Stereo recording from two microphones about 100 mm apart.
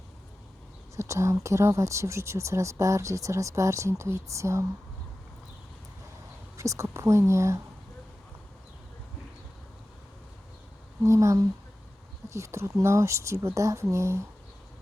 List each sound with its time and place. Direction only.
0.9 s speech: 30° right (ahead or behind)
6.6 s speech: 30° right (ahead or behind)
11.0 s speech: 30° right (ahead or behind)